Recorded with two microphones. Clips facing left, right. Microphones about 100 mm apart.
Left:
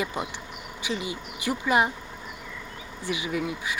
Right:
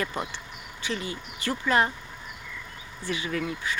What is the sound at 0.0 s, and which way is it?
Speech, 10° left (ahead or behind).